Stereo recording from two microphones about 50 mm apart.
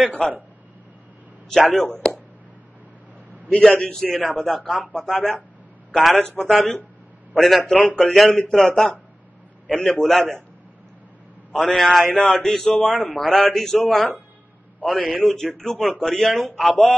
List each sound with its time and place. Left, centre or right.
2.0 s a sound: centre
3.4 s a man's voice: centre
6.2 s speech: centre
6.5 s a man's voice: centre
11.5 s a man's voice: centre